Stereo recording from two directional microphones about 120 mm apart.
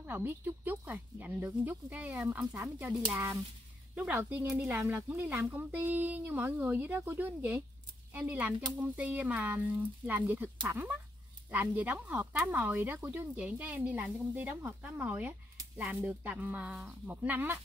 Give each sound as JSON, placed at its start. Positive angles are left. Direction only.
{"t": 0.0, "sound": "speech", "side_deg": -15}